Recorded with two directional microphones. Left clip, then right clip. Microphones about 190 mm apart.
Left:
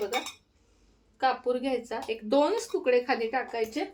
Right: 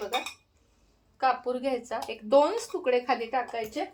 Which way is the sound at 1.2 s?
10° right (ahead or behind).